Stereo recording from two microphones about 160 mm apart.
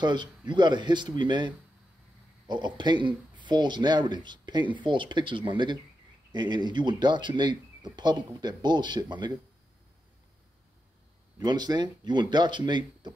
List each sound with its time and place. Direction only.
0.0 s speech: 30° right (ahead or behind)
11.3 s speech: 25° right (ahead or behind)